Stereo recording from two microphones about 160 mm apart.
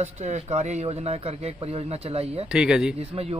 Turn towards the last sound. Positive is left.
turn(degrees=-35)  # may be behind; listen again after turning